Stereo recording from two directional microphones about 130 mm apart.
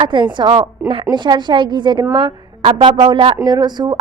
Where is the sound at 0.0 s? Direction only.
35° right (ahead or behind).